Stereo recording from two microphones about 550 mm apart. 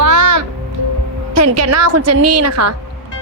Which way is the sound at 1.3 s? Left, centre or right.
Right.